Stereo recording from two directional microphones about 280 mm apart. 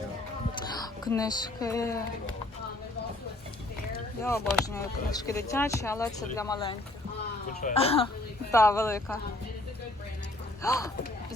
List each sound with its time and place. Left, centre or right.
0.6 s speech: centre
4.2 s speech: centre
10.6 s speech: centre